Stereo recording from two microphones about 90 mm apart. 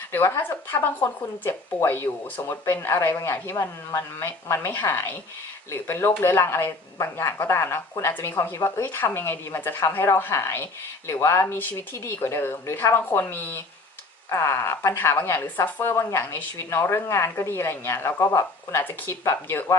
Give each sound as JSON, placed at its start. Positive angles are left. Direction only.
{"t": 0.1, "sound": "speech", "side_deg": 25}